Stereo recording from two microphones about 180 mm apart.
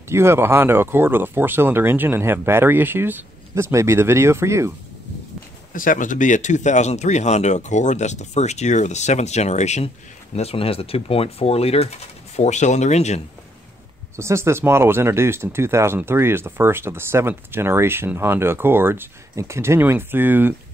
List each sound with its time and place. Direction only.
0.1 s speech: 15° right (ahead or behind)
5.7 s speech: 50° left (ahead or behind)
14.1 s speech: 15° right (ahead or behind)